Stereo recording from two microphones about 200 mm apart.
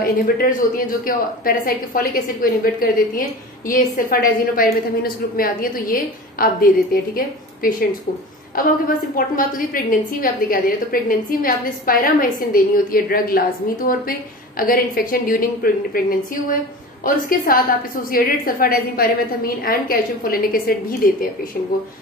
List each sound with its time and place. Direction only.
0.0 s a woman's voice: 45° left (ahead or behind)